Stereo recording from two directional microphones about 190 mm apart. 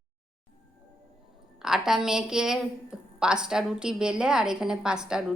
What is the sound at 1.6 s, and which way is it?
A woman's voice, centre (ahead or behind).